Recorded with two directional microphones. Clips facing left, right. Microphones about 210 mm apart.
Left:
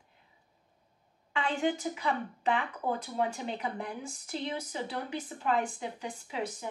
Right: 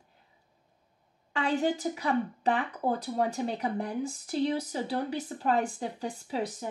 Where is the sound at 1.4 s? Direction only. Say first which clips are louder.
Right 3 dB; 40° right (ahead or behind).